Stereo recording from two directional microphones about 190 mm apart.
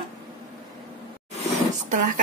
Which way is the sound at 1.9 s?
45° right (ahead or behind).